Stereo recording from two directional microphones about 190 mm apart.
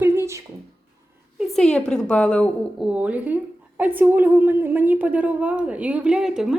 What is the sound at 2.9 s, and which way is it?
A woman's voice, 10° right (ahead or behind).